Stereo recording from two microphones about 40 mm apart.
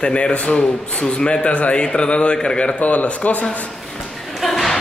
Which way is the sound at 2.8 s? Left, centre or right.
Left.